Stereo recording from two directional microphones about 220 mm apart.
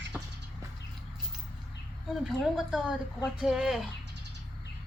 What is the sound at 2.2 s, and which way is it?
A woman's voice, centre (ahead or behind).